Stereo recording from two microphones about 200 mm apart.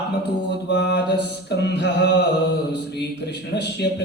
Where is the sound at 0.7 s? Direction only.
55° left (ahead or behind).